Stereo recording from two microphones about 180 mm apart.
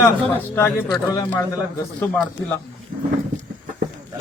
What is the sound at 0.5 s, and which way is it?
Speech, 10° left (ahead or behind).